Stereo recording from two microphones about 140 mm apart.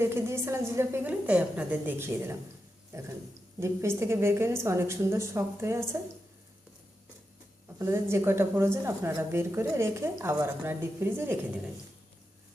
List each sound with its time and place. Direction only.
0.0 s a woman's voice: 15° right (ahead or behind)
3.6 s a woman's voice: 20° right (ahead or behind)
7.8 s a woman's voice: 20° right (ahead or behind)